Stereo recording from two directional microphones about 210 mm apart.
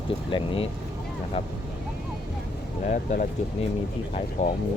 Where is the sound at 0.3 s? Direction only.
25° left (ahead or behind).